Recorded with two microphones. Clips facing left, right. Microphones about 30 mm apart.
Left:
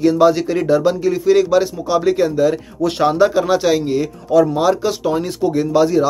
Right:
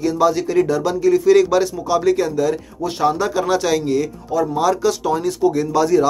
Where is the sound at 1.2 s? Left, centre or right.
Centre.